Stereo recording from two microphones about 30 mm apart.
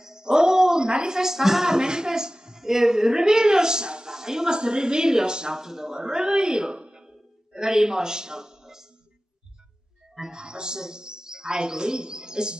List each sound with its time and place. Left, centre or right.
0.0 s a sound: right
0.8 s a woman's voice: right
10.3 s a woman's voice: right